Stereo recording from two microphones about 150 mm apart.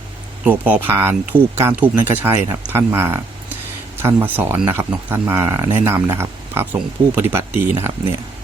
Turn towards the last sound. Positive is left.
turn(degrees=-15)  # may be behind; listen again after turning